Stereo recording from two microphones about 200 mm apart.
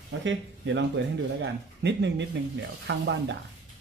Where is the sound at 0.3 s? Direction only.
65° right (ahead or behind).